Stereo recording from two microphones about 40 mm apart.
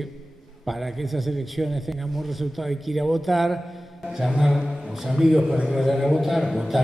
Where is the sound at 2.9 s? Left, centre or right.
Centre.